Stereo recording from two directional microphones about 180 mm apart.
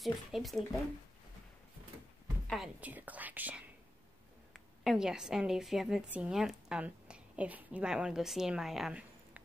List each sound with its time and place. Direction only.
0.0 s speech: centre (ahead or behind)
2.4 s speech: centre (ahead or behind)
4.8 s a woman's voice: 5° right (ahead or behind)